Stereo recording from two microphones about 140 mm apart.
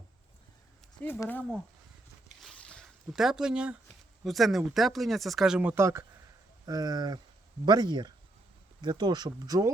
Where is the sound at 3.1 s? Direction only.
5° right (ahead or behind).